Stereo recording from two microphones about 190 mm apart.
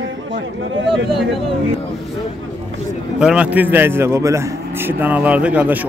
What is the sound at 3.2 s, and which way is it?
A man's voice, 5° right (ahead or behind).